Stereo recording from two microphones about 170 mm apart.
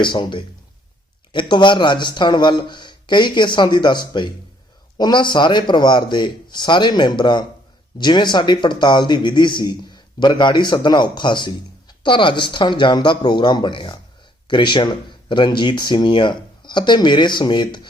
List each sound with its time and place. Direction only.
0.0 s speech: 25° left (ahead or behind)